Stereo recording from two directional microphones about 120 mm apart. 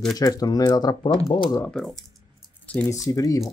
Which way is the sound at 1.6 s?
5° left (ahead or behind).